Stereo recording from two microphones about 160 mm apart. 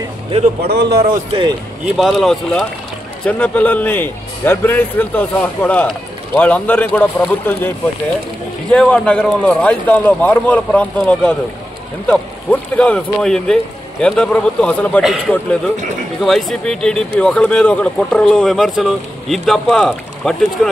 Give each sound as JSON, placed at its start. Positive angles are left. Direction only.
{"t": 0.7, "sound": "a man's voice", "side_deg": -90}
{"t": 2.0, "sound": "a man's voice", "side_deg": 0}
{"t": 8.7, "sound": "a man's voice", "side_deg": 5}